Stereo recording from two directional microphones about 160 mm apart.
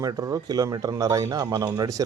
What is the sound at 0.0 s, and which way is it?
Speech, 20° right (ahead or behind).